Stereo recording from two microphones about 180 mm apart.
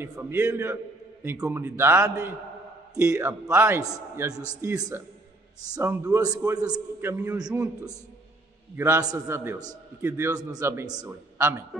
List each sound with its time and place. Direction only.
0.0 s a man's voice: 15° right (ahead or behind)